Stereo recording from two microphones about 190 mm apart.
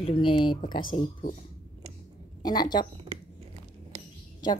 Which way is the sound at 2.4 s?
20° left (ahead or behind).